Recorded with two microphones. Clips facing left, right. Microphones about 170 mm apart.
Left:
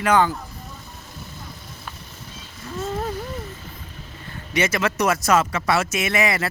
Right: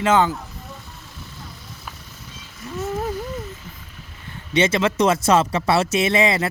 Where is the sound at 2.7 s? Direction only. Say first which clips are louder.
Right 1 dB; 20° right (ahead or behind).